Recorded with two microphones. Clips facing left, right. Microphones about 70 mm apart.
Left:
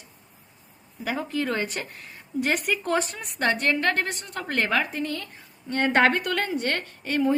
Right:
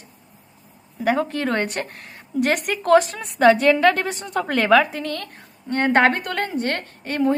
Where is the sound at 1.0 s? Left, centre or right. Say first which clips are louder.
Right 6 dB; right.